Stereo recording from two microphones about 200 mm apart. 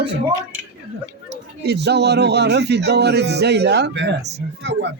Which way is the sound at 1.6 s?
55° right (ahead or behind).